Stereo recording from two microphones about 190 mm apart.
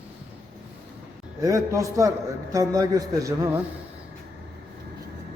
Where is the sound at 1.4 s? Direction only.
15° right (ahead or behind).